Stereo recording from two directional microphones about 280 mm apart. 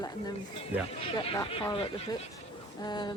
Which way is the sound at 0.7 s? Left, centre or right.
Centre.